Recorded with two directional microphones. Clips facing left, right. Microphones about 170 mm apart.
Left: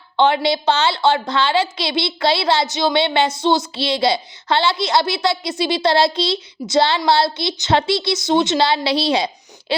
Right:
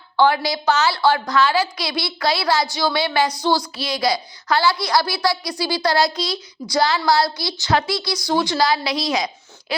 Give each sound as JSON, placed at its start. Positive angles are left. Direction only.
{"t": 0.2, "sound": "a woman's voice", "side_deg": 25}